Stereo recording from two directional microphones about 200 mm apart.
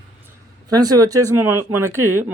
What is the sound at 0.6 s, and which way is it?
Speech, 20° right (ahead or behind).